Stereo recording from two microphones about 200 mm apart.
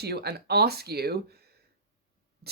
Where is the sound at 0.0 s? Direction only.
55° right (ahead or behind).